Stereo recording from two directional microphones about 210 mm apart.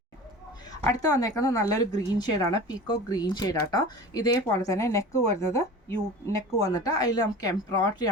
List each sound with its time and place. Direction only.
0.9 s speech: 15° left (ahead or behind)